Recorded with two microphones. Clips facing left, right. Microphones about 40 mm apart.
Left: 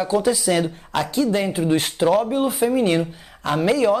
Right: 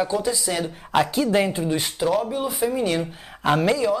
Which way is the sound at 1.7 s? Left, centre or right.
Left.